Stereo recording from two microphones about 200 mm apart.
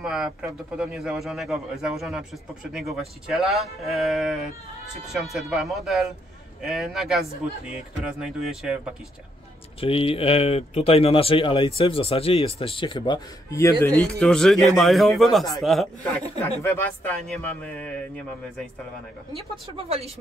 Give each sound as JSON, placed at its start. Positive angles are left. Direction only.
{"t": 0.0, "sound": "a man's voice", "side_deg": -5}
{"t": 9.8, "sound": "a man's voice", "side_deg": 25}